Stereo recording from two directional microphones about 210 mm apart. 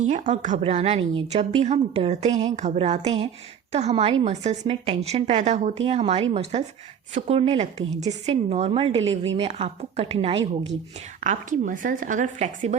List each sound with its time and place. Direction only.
0.0 s a woman's voice: 35° right (ahead or behind)